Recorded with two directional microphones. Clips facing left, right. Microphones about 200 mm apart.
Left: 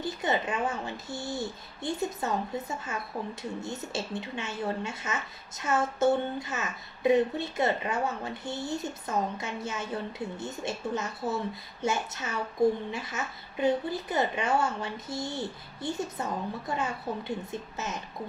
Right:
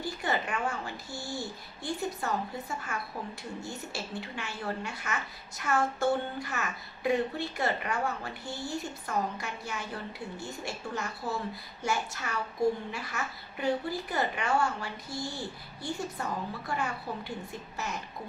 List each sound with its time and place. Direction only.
0.0 s speech: 20° left (ahead or behind)